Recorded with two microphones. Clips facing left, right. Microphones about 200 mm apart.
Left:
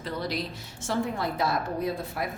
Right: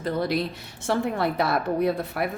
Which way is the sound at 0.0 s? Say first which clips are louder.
Right 6 dB; 55° right (ahead or behind).